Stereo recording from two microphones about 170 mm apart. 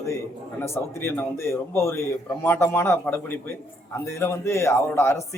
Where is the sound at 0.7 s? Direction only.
15° left (ahead or behind).